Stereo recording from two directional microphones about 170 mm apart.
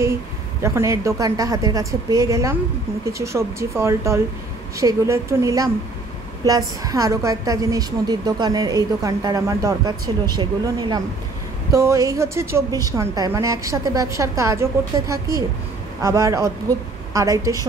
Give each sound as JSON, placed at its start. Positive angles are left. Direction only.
{"t": 0.0, "sound": "a woman's voice", "side_deg": -15}